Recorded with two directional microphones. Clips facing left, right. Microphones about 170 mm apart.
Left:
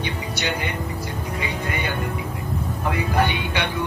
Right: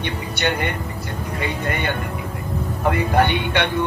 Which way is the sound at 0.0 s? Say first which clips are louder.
Right 3 dB; 55° right (ahead or behind).